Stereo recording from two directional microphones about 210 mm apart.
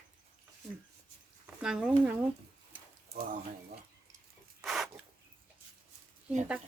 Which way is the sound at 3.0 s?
50° right (ahead or behind).